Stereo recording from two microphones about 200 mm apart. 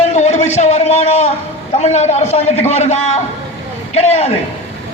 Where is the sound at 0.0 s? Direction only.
35° left (ahead or behind).